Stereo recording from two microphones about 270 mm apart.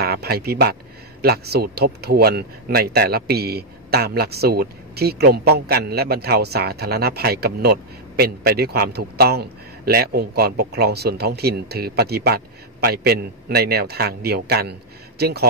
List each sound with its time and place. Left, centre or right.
0.0 s a man's voice: right